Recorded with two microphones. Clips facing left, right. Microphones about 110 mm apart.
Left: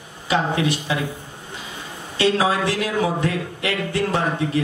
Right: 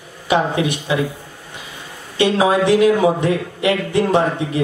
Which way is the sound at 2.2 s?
20° right (ahead or behind).